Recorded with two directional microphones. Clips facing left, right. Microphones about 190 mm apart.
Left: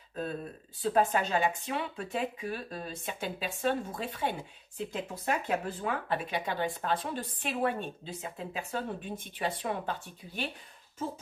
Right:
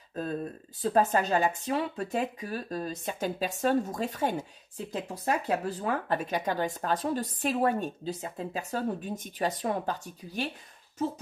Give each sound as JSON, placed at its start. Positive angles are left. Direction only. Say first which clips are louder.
{"t": 0.1, "sound": "speech", "louder": "right 3 dB", "side_deg": -40}